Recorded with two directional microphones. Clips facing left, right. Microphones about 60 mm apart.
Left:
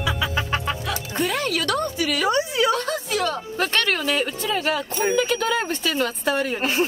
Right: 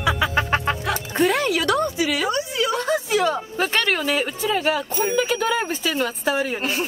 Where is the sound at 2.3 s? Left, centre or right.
Left.